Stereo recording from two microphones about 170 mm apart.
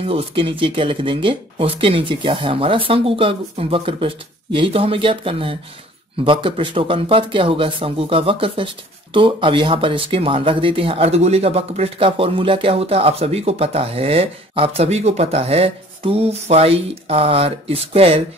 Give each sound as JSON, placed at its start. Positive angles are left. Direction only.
{"t": 0.1, "sound": "speech", "side_deg": -35}